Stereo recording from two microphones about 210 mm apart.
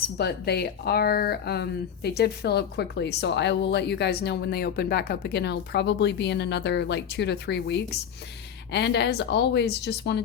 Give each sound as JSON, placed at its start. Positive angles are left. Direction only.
{"t": 0.2, "sound": "speech", "side_deg": 50}